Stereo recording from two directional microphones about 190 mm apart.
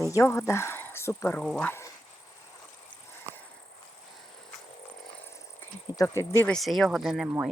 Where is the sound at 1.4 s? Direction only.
Centre (ahead or behind).